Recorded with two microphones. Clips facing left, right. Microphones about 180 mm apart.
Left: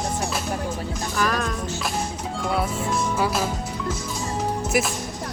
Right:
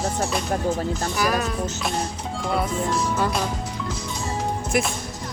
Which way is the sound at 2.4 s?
Centre (ahead or behind).